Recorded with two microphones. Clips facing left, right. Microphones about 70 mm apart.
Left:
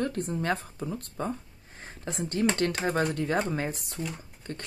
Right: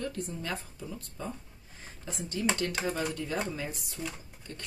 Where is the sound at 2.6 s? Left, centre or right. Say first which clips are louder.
Left 5 dB; left.